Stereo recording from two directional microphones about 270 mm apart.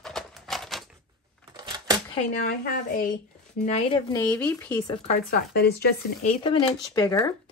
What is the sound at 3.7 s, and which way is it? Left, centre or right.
Speech, left.